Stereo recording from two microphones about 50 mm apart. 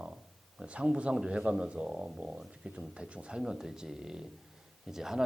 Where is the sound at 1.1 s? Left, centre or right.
Centre.